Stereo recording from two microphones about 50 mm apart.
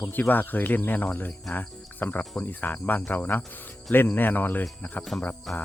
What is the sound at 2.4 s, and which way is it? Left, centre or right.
Speech, left.